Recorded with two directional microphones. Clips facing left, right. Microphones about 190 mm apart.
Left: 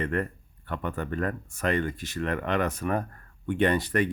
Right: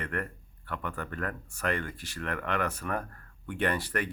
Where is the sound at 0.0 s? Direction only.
20° left (ahead or behind).